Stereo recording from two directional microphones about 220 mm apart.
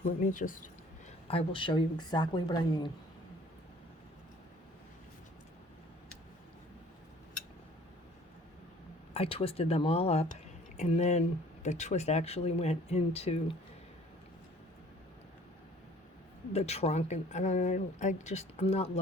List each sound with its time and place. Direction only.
0.0 s speech: 35° left (ahead or behind)
1.3 s speech: 25° left (ahead or behind)
9.1 s speech: 25° left (ahead or behind)
16.5 s speech: 30° left (ahead or behind)